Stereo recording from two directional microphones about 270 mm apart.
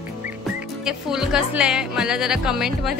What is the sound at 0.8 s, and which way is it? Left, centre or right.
Speech, centre.